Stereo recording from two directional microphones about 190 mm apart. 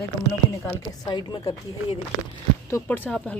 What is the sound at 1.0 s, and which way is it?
Speech, 20° left (ahead or behind).